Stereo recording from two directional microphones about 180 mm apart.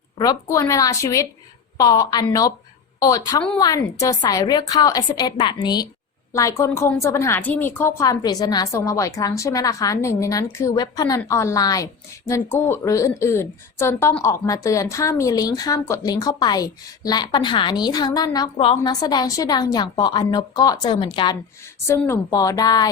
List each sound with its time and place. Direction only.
0.5 s a woman's voice: 20° left (ahead or behind)
21.8 s a woman's voice: 15° left (ahead or behind)